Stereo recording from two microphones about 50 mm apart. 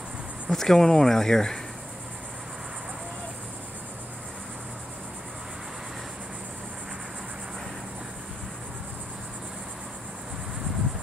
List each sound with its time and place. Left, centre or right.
0.5 s speech: centre